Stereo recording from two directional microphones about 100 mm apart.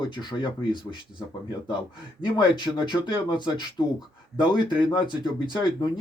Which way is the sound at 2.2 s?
50° left (ahead or behind).